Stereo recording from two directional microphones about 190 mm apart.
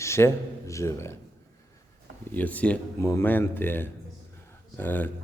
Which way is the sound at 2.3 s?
10° left (ahead or behind).